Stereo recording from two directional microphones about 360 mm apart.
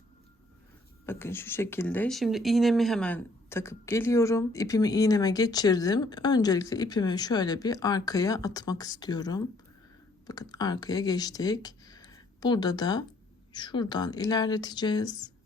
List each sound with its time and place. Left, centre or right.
1.0 s speech: centre